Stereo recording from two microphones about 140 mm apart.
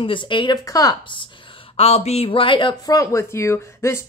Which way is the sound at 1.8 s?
50° left (ahead or behind).